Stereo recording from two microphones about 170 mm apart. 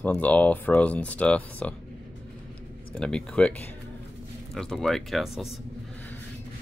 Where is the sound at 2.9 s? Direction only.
5° left (ahead or behind).